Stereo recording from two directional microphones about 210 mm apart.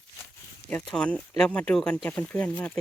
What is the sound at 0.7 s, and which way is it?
Speech, 5° left (ahead or behind).